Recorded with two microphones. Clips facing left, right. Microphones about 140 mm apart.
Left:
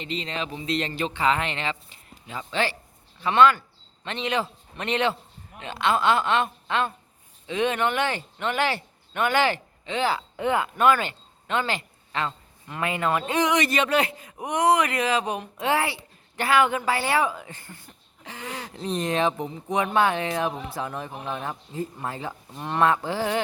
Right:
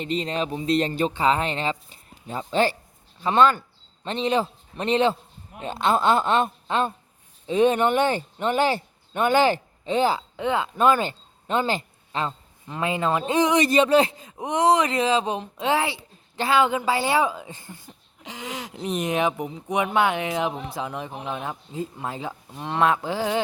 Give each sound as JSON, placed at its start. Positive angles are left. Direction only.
{"t": 0.0, "sound": "a man's voice", "side_deg": -45}
{"t": 10.2, "sound": "speech", "side_deg": -15}
{"t": 10.8, "sound": "speech", "side_deg": -35}
{"t": 12.7, "sound": "speech", "side_deg": -25}